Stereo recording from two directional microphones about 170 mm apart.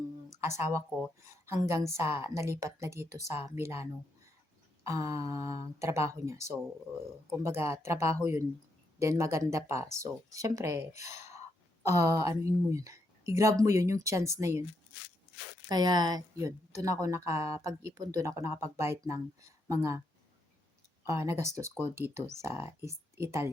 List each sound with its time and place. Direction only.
0.4 s a woman's voice: 15° right (ahead or behind)
4.9 s a woman's voice: 15° right (ahead or behind)
15.7 s a woman's voice: 25° right (ahead or behind)
21.1 s a woman's voice: 15° right (ahead or behind)